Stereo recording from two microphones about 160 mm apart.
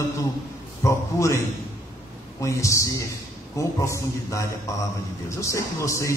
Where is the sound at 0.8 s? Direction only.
20° left (ahead or behind).